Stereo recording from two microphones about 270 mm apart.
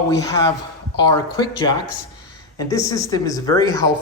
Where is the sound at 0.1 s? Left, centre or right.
Centre.